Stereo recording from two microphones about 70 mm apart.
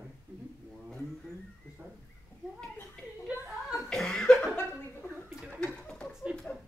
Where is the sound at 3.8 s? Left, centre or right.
Centre.